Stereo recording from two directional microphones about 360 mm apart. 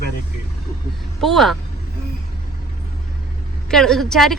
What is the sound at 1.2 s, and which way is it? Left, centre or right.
Speech, centre.